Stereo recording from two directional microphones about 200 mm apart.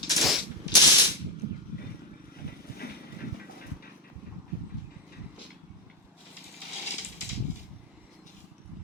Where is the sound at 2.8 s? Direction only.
50° left (ahead or behind).